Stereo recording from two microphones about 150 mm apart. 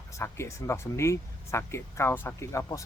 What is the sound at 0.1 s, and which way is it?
Speech, 20° left (ahead or behind).